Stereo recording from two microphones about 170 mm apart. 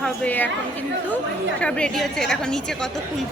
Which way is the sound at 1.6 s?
5° left (ahead or behind).